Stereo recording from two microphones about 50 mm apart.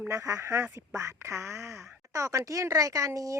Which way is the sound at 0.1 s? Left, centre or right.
Right.